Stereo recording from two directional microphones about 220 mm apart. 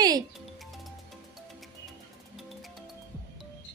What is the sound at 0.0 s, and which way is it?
Music, 15° right (ahead or behind).